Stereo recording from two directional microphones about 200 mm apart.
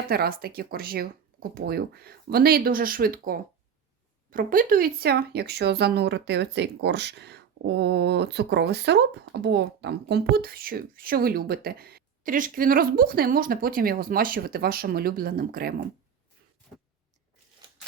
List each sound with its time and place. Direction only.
0.1 s speech: 50° right (ahead or behind)